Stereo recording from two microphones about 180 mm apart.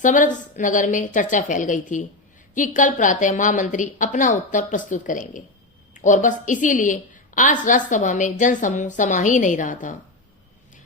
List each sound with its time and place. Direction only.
0.0 s a woman's voice: 45° left (ahead or behind)